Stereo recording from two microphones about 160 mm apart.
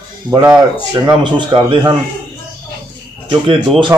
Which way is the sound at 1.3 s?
30° right (ahead or behind).